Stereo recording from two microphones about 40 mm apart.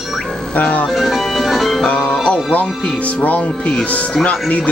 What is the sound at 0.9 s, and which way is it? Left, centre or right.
Music, centre.